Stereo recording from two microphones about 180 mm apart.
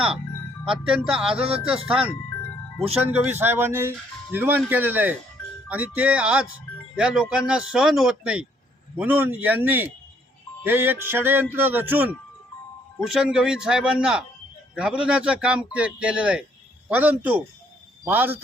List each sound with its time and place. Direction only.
0.7 s a man's voice: 5° right (ahead or behind)
1.3 s speech: 30° right (ahead or behind)
1.9 s a man's voice: 5° right (ahead or behind)